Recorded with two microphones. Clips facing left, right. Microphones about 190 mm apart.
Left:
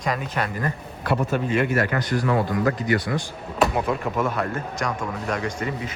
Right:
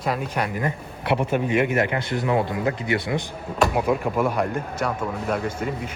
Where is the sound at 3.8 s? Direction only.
10° right (ahead or behind).